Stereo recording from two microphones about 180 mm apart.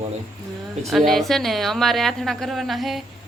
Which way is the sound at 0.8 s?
Centre (ahead or behind).